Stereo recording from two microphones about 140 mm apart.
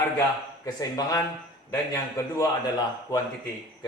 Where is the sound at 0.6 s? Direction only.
25° left (ahead or behind).